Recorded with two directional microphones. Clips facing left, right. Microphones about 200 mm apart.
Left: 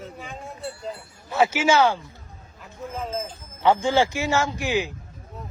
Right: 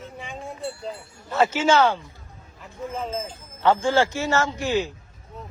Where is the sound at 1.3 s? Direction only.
10° left (ahead or behind).